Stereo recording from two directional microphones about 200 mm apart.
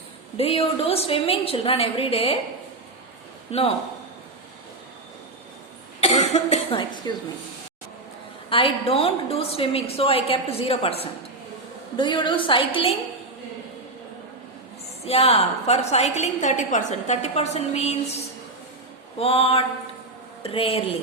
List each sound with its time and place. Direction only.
0.3 s a woman's voice: 30° left (ahead or behind)
6.0 s cough: 35° left (ahead or behind)
8.4 s a woman's voice: 25° left (ahead or behind)
15.0 s a woman's voice: 30° left (ahead or behind)
19.2 s a woman's voice: 30° left (ahead or behind)